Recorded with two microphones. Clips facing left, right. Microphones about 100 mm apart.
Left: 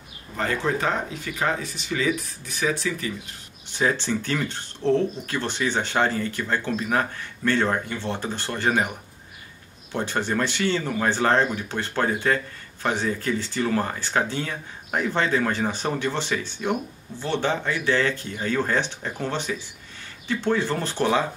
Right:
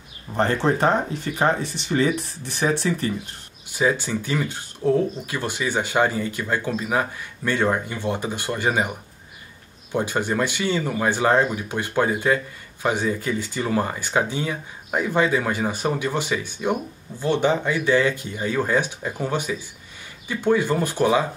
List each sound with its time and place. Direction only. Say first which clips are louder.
0.4 s speech: right 5 dB; 30° right (ahead or behind)
3.7 s speech: right 2 dB; 10° right (ahead or behind)
9.9 s speech: right 2 dB; 10° right (ahead or behind)